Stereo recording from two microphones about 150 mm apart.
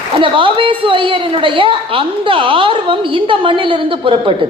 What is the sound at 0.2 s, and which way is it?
A woman's voice, 35° right (ahead or behind).